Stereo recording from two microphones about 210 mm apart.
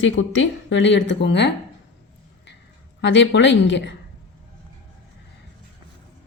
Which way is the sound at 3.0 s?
60° left (ahead or behind).